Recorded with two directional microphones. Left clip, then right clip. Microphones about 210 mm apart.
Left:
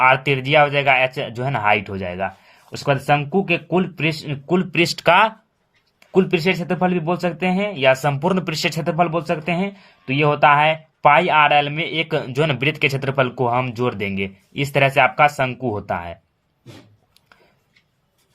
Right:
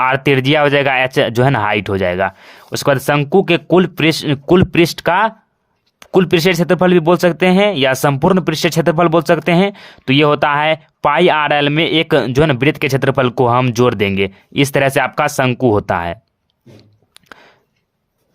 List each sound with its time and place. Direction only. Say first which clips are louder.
0.0 s speech: right 2 dB; 45° right (ahead or behind)
6.0 s speech: right 6 dB; 50° right (ahead or behind)